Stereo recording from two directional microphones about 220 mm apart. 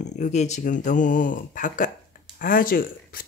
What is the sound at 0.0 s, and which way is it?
Speech, 35° left (ahead or behind).